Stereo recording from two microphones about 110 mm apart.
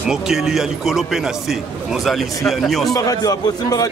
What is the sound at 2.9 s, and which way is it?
Speech, 35° left (ahead or behind).